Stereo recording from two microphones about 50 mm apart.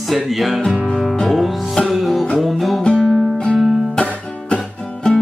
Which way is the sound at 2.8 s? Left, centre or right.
Centre.